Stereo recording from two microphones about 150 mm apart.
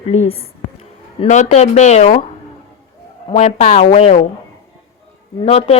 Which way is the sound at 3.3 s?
50° left (ahead or behind).